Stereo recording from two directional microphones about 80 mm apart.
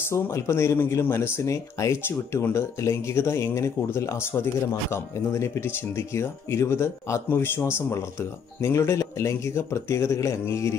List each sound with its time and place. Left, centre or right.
0.1 s speech: left